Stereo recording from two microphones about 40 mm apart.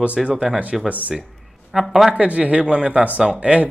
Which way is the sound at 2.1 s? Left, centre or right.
Right.